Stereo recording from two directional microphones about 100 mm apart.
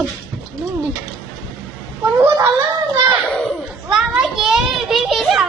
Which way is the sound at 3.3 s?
10° left (ahead or behind).